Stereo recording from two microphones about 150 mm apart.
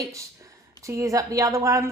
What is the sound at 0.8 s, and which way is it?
A woman's voice, 20° right (ahead or behind).